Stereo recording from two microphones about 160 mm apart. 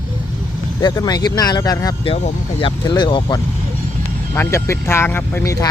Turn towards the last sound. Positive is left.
turn(degrees=20)  # may be behind; listen again after turning